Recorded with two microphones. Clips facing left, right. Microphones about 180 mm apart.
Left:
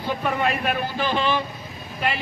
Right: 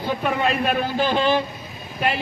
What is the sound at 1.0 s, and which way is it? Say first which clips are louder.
Speech: right 4 dB; 40° right (ahead or behind).